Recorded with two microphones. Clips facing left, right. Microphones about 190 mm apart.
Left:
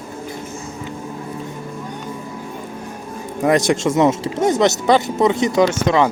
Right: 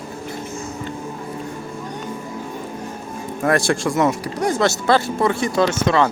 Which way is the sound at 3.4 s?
20° left (ahead or behind).